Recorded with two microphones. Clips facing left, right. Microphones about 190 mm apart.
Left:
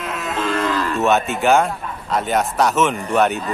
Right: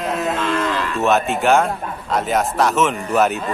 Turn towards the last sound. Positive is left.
turn(degrees=0)  # may be behind; listen again after turning